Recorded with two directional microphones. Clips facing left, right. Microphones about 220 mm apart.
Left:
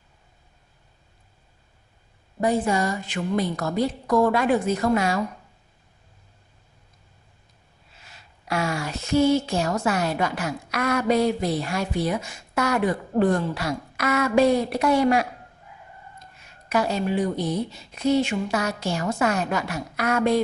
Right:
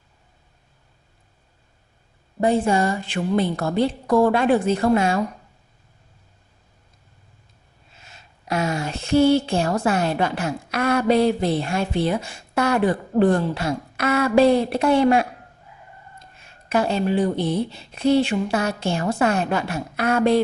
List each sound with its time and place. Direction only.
2.4 s speech: 30° right (ahead or behind)
8.0 s speech: 25° right (ahead or behind)